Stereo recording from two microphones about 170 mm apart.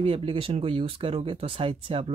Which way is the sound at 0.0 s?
30° right (ahead or behind).